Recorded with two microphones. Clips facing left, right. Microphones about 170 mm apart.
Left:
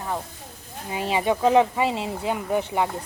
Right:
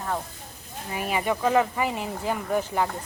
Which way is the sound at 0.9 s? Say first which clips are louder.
Left 3 dB; 25° left (ahead or behind).